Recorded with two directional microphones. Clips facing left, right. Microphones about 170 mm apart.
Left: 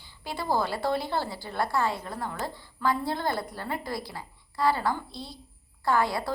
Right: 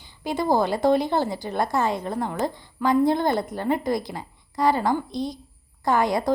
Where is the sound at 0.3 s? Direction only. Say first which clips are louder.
Right 7 dB; 20° right (ahead or behind).